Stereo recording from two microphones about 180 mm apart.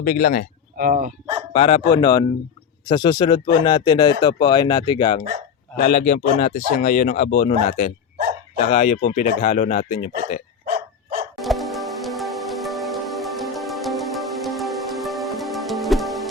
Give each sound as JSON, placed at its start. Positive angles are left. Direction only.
{"t": 0.0, "sound": "speech", "side_deg": 50}
{"t": 0.8, "sound": "speech", "side_deg": -50}
{"t": 1.5, "sound": "speech", "side_deg": 30}
{"t": 5.7, "sound": "speech", "side_deg": 45}
{"t": 11.3, "sound": "music", "side_deg": 0}